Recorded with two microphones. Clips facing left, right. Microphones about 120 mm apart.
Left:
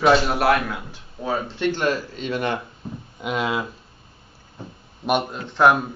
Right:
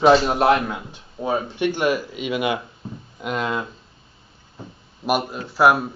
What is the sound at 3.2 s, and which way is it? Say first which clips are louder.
Speech: even; centre (ahead or behind).